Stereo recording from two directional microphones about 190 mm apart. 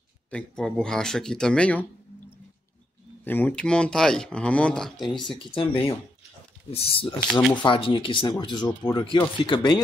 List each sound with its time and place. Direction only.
0.3 s speech: 5° left (ahead or behind)
3.3 s speech: 10° left (ahead or behind)
5.1 s speech: 25° left (ahead or behind)